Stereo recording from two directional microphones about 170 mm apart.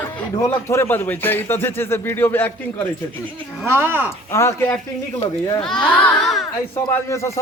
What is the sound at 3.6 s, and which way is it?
Speech, 10° right (ahead or behind).